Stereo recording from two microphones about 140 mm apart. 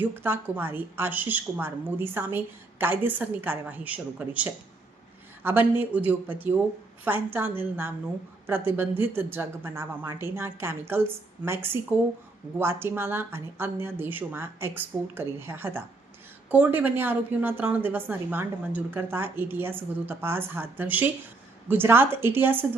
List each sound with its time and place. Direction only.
0.0 s a woman's voice: 15° right (ahead or behind)